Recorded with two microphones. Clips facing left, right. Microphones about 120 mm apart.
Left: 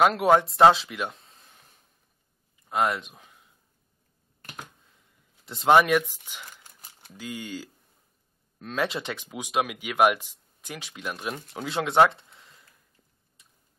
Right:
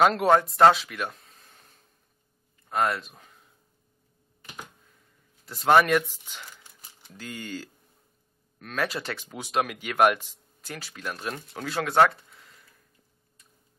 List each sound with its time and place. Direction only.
0.0 s speech: 5° left (ahead or behind)
0.7 s speech: 20° left (ahead or behind)
1.3 s a sound: centre (ahead or behind)
2.7 s speech: 20° left (ahead or behind)
5.7 s speech: 5° left (ahead or behind)
8.5 s speech: 20° left (ahead or behind)
11.6 s speech: 20° left (ahead or behind)